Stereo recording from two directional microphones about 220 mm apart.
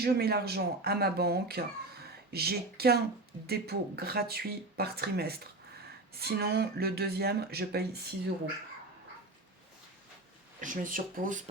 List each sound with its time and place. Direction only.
0.0 s speech: 45° right (ahead or behind)
10.6 s speech: 35° right (ahead or behind)